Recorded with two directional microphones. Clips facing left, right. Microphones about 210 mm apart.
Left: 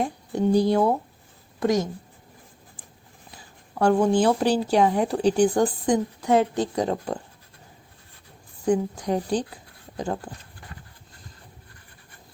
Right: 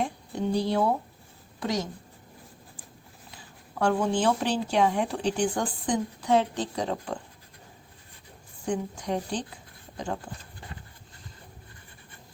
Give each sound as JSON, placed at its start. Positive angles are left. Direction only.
{"t": 0.0, "sound": "speech", "side_deg": 45}
{"t": 3.8, "sound": "speech", "side_deg": 40}
{"t": 8.6, "sound": "speech", "side_deg": 40}